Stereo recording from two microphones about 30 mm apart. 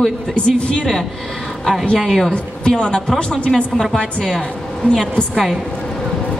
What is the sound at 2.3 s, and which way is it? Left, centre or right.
Speech, left.